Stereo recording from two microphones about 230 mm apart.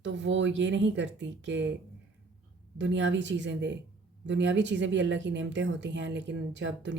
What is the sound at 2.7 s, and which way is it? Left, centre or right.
A woman's voice, right.